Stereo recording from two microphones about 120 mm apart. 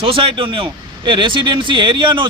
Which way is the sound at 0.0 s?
45° right (ahead or behind).